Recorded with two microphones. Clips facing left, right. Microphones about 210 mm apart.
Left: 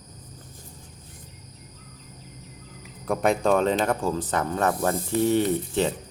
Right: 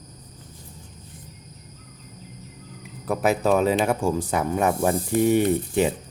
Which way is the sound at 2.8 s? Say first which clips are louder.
Right 1 dB; centre (ahead or behind).